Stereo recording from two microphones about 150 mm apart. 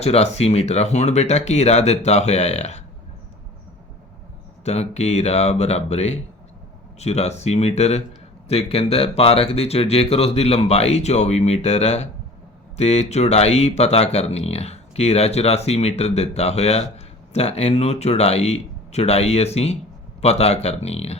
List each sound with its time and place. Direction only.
0.0 s speech: 45° left (ahead or behind)
4.6 s speech: 45° left (ahead or behind)